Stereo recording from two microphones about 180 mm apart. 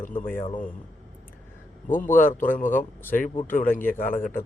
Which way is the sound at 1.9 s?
45° left (ahead or behind).